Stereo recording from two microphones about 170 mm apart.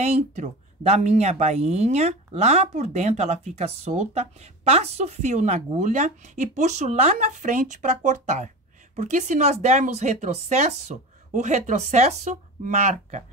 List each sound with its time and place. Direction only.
0.0 s speech: 40° right (ahead or behind)